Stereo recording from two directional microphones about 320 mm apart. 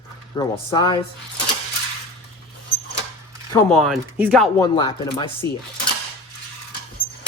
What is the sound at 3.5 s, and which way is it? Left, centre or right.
Speech, centre.